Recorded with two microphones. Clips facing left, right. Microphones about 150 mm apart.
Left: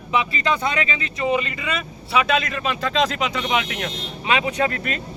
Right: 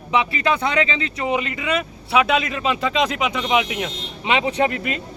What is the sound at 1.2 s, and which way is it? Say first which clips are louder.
Speech: even; 15° right (ahead or behind).